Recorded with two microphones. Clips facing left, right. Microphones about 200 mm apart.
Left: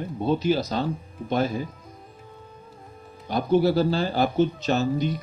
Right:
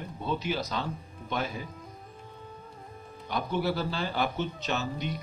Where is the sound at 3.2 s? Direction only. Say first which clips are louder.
Left 9 dB; 35° left (ahead or behind).